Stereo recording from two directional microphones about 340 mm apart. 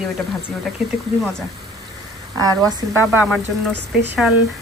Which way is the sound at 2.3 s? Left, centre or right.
Centre.